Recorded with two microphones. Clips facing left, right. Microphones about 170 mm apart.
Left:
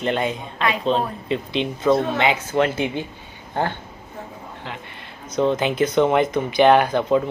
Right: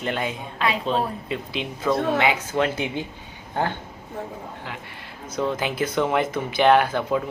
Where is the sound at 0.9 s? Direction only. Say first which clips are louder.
Left 3 dB; 25° left (ahead or behind).